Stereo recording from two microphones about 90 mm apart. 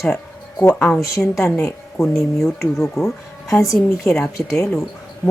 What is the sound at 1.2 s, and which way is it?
Speech, 35° left (ahead or behind).